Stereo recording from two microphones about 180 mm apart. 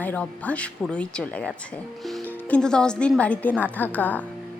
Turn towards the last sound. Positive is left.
turn(degrees=10)  # may be behind; listen again after turning